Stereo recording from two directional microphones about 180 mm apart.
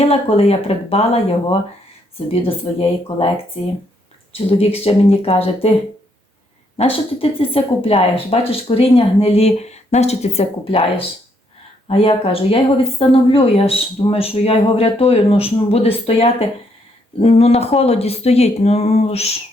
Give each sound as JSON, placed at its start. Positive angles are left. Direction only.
{"t": 0.0, "sound": "speech", "side_deg": 35}
{"t": 4.4, "sound": "speech", "side_deg": 30}
{"t": 6.7, "sound": "speech", "side_deg": 30}